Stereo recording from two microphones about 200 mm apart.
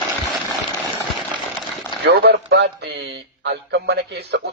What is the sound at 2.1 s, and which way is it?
A man's voice, 55° right (ahead or behind).